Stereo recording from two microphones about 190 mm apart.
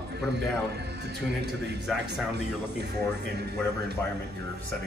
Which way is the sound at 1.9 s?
Centre (ahead or behind).